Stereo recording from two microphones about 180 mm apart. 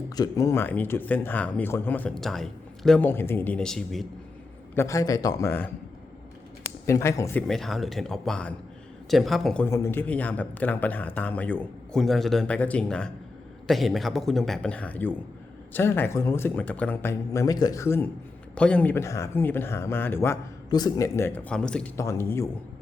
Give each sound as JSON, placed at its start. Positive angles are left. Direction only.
{"t": 0.2, "sound": "speech", "side_deg": 15}
{"t": 4.7, "sound": "speech", "side_deg": 15}
{"t": 6.8, "sound": "speech", "side_deg": 15}
{"t": 7.4, "sound": "a man's voice", "side_deg": 0}
{"t": 9.6, "sound": "a man's voice", "side_deg": 15}
{"t": 21.9, "sound": "speech", "side_deg": 15}